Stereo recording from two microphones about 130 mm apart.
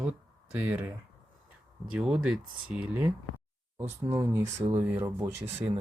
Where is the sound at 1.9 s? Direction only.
5° right (ahead or behind); by 5.6 s 20° right (ahead or behind).